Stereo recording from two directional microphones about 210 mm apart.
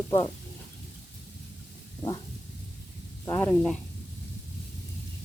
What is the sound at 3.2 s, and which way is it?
Speech, 10° left (ahead or behind).